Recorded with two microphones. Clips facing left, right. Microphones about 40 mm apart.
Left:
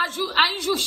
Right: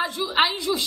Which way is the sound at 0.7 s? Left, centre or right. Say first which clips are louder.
Left 1 dB; left.